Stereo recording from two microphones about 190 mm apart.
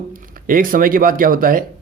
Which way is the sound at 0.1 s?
45° right (ahead or behind).